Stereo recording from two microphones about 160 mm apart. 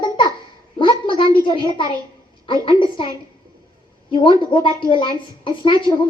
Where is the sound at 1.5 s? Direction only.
30° left (ahead or behind).